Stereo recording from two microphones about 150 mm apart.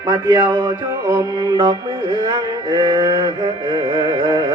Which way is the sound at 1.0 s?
20° right (ahead or behind).